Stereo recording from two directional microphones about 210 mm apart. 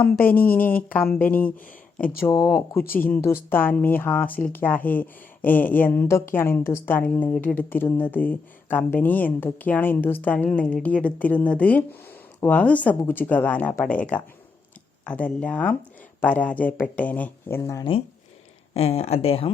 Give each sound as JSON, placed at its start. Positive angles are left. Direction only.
{"t": 0.0, "sound": "speech", "side_deg": 10}
{"t": 1.5, "sound": "speech", "side_deg": 40}
{"t": 2.2, "sound": "speech", "side_deg": 15}